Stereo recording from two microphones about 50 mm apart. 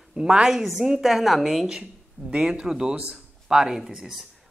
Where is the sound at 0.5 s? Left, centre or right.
Centre.